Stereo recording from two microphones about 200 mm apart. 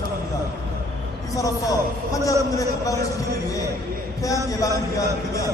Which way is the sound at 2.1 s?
15° left (ahead or behind).